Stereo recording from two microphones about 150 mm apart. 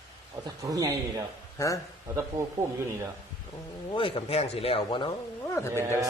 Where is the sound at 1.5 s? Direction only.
20° left (ahead or behind).